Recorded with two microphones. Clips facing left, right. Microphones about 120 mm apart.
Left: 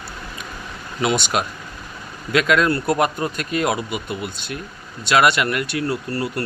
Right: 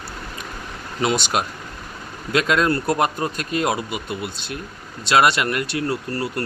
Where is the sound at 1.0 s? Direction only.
35° right (ahead or behind).